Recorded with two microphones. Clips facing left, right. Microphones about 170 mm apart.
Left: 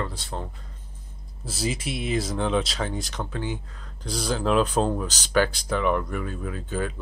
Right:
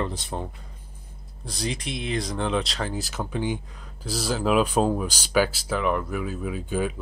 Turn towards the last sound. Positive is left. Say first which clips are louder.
# right 2 dB
turn(degrees=-10)  # may be behind; listen again after turning